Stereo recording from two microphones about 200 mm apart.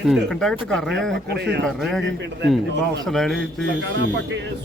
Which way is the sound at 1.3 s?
55° right (ahead or behind).